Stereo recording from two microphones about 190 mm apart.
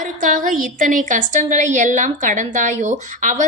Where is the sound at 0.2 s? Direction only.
45° right (ahead or behind).